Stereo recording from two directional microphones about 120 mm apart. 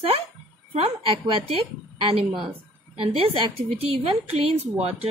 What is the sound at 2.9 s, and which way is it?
A woman's voice, 50° right (ahead or behind).